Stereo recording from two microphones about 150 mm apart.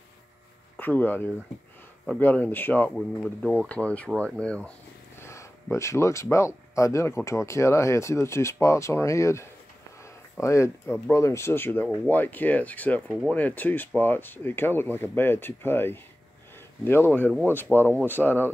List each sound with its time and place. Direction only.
0.7 s speech: 10° left (ahead or behind)
5.2 s a sound: 20° left (ahead or behind)
6.3 s speech: 20° left (ahead or behind)